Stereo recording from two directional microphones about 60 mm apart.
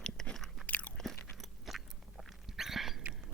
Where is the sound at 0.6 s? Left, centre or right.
Left.